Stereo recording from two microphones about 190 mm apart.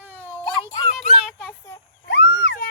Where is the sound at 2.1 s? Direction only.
65° left (ahead or behind).